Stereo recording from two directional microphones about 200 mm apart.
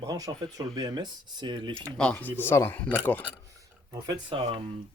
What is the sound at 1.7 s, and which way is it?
Speech, 5° left (ahead or behind).